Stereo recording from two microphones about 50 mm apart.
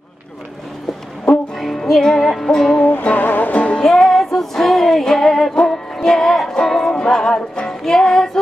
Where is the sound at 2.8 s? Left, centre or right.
Left.